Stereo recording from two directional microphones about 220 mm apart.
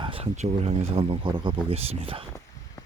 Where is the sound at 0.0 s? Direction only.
25° right (ahead or behind).